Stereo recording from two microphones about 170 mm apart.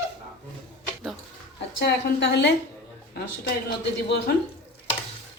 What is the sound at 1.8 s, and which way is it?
Speech, 90° left.